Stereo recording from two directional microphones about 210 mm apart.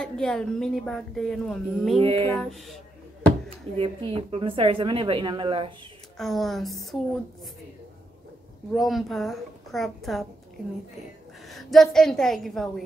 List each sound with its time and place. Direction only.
0.0 s speech: 5° left (ahead or behind)
2.0 s a woman's voice: 25° right (ahead or behind)
2.2 s speech: centre (ahead or behind)
3.7 s a woman's voice: 25° right (ahead or behind)
6.1 s speech: centre (ahead or behind)
8.7 s speech: centre (ahead or behind)
11.4 s a woman's voice: centre (ahead or behind)